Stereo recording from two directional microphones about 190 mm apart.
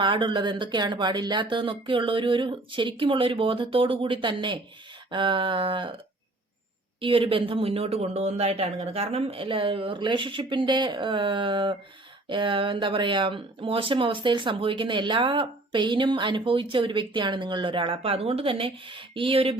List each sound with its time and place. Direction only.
0.0 s speech: 25° right (ahead or behind)
7.0 s speech: 30° right (ahead or behind)